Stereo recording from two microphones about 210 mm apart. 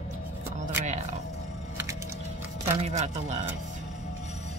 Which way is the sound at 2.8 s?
30° right (ahead or behind).